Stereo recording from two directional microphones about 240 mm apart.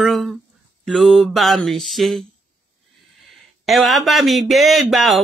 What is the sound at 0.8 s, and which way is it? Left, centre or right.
Speech, centre.